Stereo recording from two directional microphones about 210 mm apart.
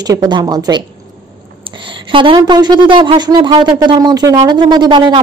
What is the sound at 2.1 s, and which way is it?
Speech, 25° right (ahead or behind).